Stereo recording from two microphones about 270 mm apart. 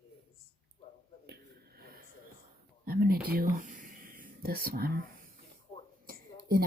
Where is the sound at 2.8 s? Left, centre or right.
Right.